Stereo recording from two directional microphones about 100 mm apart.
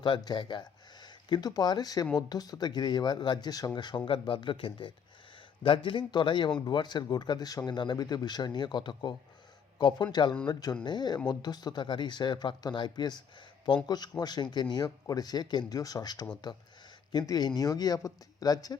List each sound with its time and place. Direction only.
0.0 s speech: 50° left (ahead or behind)